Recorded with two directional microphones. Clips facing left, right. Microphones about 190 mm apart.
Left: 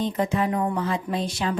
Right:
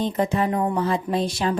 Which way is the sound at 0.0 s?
35° right (ahead or behind).